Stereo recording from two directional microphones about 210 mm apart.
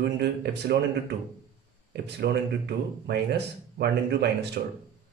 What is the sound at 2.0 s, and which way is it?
Speech, 50° right (ahead or behind).